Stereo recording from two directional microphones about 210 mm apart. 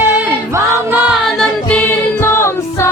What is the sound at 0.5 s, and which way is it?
Music, 10° right (ahead or behind).